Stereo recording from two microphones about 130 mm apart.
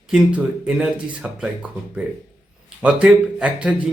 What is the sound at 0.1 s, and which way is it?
A man's voice, 5° right (ahead or behind).